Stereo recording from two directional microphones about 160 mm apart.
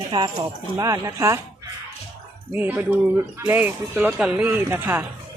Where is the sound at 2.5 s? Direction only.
10° right (ahead or behind).